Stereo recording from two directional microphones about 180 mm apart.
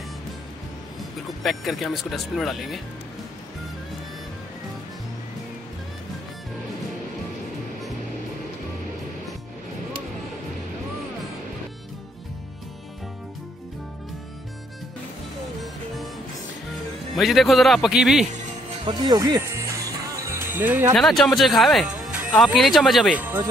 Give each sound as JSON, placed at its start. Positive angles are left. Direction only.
{"t": 1.4, "sound": "speech", "side_deg": 0}
{"t": 17.1, "sound": "speech", "side_deg": 0}
{"t": 18.9, "sound": "music", "side_deg": -25}
{"t": 20.5, "sound": "speech", "side_deg": -10}
{"t": 21.0, "sound": "speech", "side_deg": 0}